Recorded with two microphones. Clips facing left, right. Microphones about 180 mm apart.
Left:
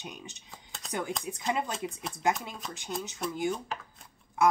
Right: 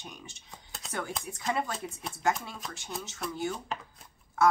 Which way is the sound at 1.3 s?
15° left (ahead or behind).